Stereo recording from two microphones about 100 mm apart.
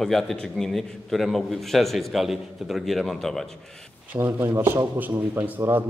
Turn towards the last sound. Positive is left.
turn(degrees=-20)  # may be behind; listen again after turning